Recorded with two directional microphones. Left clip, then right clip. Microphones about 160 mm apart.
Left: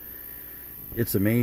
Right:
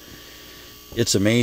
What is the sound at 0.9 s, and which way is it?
Speech, 10° right (ahead or behind).